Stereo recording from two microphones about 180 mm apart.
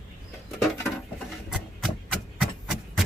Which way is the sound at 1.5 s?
5° right (ahead or behind).